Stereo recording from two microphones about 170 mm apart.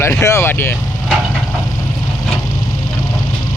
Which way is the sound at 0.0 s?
15° left (ahead or behind).